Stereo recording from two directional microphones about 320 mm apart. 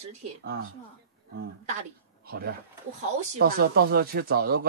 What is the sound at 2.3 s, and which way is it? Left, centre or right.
Speech, right.